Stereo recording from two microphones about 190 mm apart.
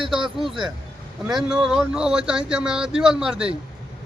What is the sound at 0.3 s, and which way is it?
A man's voice, centre (ahead or behind).